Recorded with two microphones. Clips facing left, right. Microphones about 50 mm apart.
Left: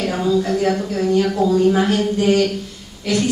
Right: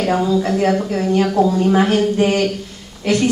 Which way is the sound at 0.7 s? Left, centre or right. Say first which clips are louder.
Right 1 dB; right.